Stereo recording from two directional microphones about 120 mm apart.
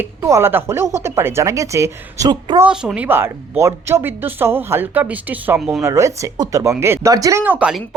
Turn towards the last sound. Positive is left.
turn(degrees=-15)  # may be behind; listen again after turning